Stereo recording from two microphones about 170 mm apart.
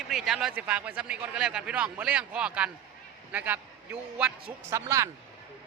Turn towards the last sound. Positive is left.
turn(degrees=-15)  # may be behind; listen again after turning